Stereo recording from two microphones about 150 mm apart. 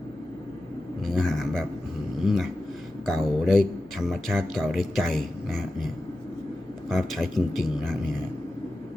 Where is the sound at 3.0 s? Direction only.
Centre (ahead or behind).